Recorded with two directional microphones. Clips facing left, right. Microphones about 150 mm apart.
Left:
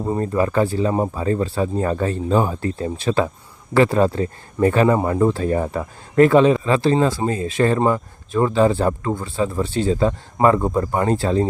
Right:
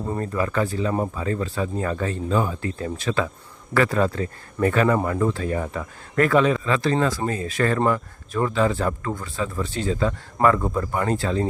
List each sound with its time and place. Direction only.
0.1 s speech: 30° left (ahead or behind)